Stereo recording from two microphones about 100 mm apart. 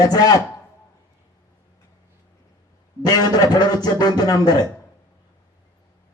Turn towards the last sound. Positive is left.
turn(degrees=40)  # may be behind; listen again after turning